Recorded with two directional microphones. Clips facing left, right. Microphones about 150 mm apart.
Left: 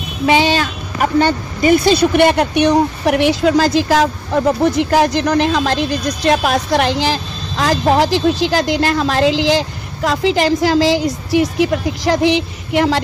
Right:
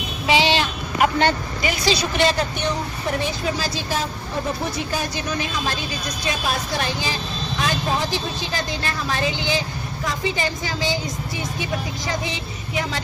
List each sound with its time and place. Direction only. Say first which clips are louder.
0.3 s a woman's voice: left 5 dB; 50° left (ahead or behind); by 13.0 s 75° left (ahead or behind)